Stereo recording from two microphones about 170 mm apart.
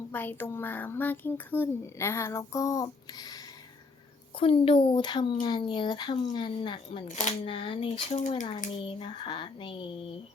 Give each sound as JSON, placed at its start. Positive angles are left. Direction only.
{"t": 0.1, "sound": "speech", "side_deg": 10}
{"t": 7.1, "sound": "speech", "side_deg": 40}
{"t": 7.4, "sound": "speech", "side_deg": 30}
{"t": 8.8, "sound": "speech", "side_deg": 30}